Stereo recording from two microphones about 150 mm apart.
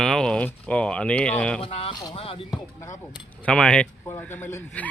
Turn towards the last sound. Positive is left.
turn(degrees=15)  # may be behind; listen again after turning